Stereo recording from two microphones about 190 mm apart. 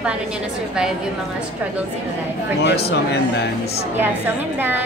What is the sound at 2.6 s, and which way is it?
Speech, 60° left (ahead or behind).